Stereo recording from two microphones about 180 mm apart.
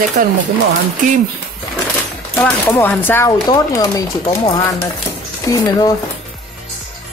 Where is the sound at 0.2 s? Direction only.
50° right (ahead or behind).